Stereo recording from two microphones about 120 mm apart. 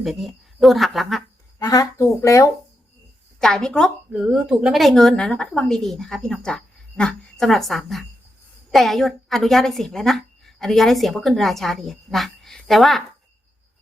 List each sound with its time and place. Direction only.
0.0 s a woman's voice: centre (ahead or behind)
1.5 s speech: 30° left (ahead or behind)
3.4 s a woman's voice: 5° left (ahead or behind)
4.1 s a woman's voice: 5° right (ahead or behind)